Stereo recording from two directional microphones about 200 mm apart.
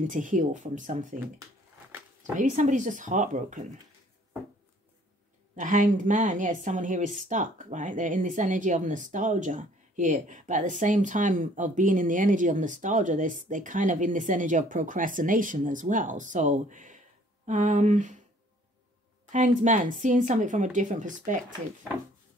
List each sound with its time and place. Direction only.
0.0 s speech: 40° right (ahead or behind)
2.3 s speech: 40° right (ahead or behind)
5.6 s speech: 40° right (ahead or behind)
19.3 s speech: 40° right (ahead or behind)